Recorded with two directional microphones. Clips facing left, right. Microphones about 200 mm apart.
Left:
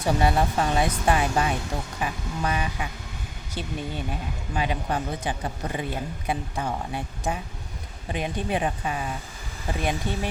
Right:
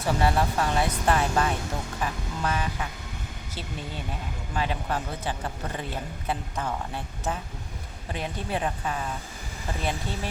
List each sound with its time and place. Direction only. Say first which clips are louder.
0.0 s a man's voice: left 2 dB; 15° left (ahead or behind)
4.5 s a man's voice: left 2 dB; 15° left (ahead or behind)
10.1 s a man's voice: left 5 dB; 15° left (ahead or behind)